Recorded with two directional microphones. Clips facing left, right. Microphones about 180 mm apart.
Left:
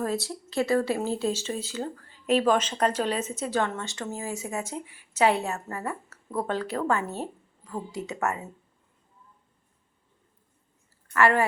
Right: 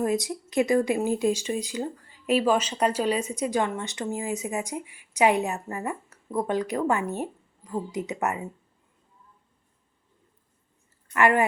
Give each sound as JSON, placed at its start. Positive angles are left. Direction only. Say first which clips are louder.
{"t": 0.0, "sound": "a woman's voice", "louder": "right 4 dB", "side_deg": -15}
{"t": 11.1, "sound": "speech", "louder": "right 1 dB", "side_deg": -15}